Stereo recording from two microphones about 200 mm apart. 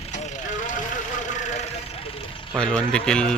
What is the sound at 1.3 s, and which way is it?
Vehicle, 35° left (ahead or behind).